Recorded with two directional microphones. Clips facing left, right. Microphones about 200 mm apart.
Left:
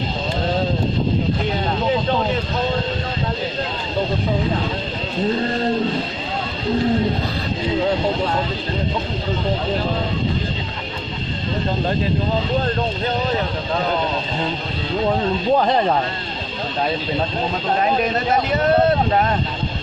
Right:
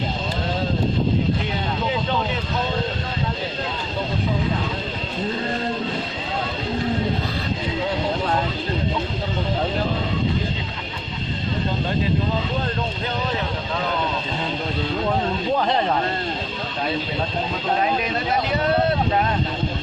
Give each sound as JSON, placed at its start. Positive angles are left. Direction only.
{"t": 17.7, "sound": "speech", "side_deg": 45}